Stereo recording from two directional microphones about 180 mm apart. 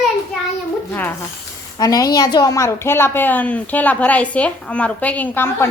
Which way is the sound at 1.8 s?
20° left (ahead or behind).